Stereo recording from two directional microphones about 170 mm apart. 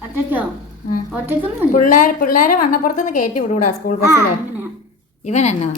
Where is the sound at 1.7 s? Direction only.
55° left (ahead or behind).